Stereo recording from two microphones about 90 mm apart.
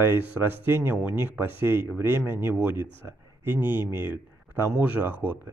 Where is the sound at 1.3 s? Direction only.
20° right (ahead or behind).